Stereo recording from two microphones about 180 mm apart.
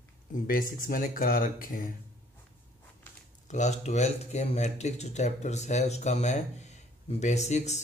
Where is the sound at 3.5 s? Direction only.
40° left (ahead or behind).